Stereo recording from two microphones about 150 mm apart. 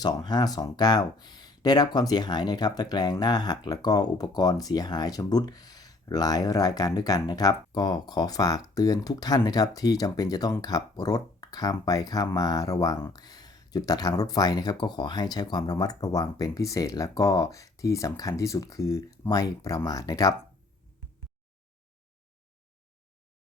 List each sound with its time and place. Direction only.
0.0 s speech: 25° left (ahead or behind)